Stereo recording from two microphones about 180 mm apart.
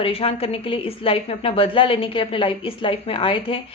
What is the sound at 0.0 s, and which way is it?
A woman's voice, 30° left (ahead or behind).